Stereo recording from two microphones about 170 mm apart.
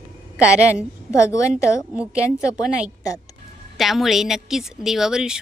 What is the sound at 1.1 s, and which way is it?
Speech, 15° left (ahead or behind).